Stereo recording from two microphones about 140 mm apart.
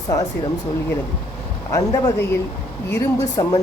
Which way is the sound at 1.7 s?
25° left (ahead or behind).